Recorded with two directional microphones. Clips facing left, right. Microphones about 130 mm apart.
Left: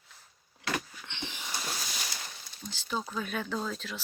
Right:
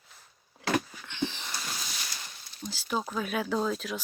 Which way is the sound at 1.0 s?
20° left (ahead or behind).